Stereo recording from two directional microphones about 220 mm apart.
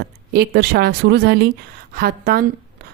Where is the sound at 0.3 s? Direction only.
45° right (ahead or behind).